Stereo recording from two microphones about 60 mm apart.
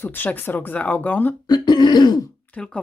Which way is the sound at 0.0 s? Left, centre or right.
Left.